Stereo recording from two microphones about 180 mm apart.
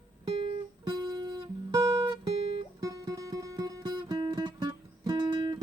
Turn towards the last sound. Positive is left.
turn(degrees=-25)  # may be behind; listen again after turning